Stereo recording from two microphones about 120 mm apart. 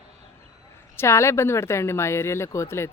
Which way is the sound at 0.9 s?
20° left (ahead or behind).